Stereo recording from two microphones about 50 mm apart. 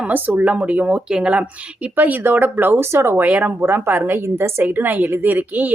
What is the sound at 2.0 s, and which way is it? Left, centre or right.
Speech, right.